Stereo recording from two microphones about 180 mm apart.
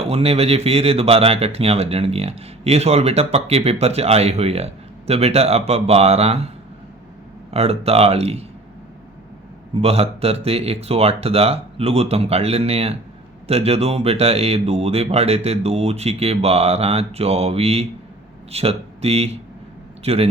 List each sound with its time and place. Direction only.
0.0 s speech: 35° right (ahead or behind)
7.5 s speech: 35° right (ahead or behind)
9.8 s speech: 35° right (ahead or behind)